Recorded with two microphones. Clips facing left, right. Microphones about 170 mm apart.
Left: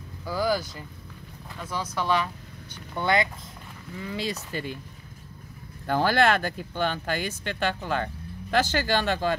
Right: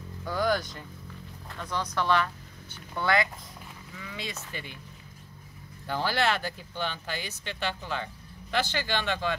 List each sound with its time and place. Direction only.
0.2 s speech: 5° left (ahead or behind); by 3.3 s 20° left (ahead or behind)
4.0 s speech: 35° left (ahead or behind)
5.9 s speech: 50° left (ahead or behind)